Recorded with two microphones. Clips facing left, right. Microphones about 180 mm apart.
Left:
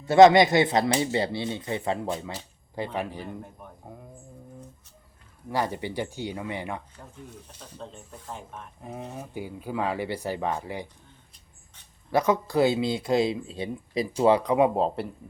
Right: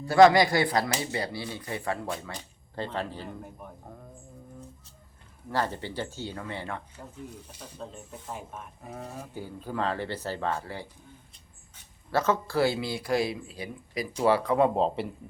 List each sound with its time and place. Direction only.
0.0 s speech: 20° left (ahead or behind)
3.2 s speech: centre (ahead or behind)
5.5 s speech: 15° left (ahead or behind)
7.5 s speech: 5° right (ahead or behind)
8.8 s speech: 10° left (ahead or behind)
12.1 s speech: 15° left (ahead or behind)
14.8 s speech: 5° left (ahead or behind)